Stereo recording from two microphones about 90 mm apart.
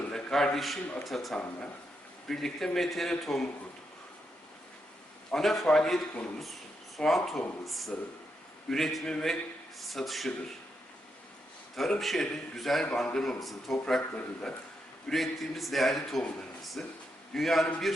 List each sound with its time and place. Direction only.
0.0 s a sound: 5° left (ahead or behind)
0.9 s a man's voice: centre (ahead or behind)
1.4 s speech: 15° left (ahead or behind)
2.2 s a man's voice: 5° left (ahead or behind)
5.3 s a man's voice: 5° left (ahead or behind)
11.7 s a man's voice: centre (ahead or behind)